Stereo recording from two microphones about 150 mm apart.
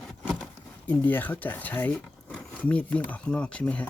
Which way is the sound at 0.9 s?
10° left (ahead or behind).